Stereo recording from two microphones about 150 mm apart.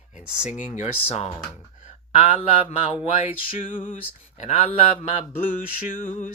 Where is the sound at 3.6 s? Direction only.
60° left (ahead or behind).